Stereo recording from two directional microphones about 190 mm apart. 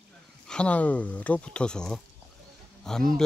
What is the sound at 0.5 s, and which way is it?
Speech, 5° left (ahead or behind).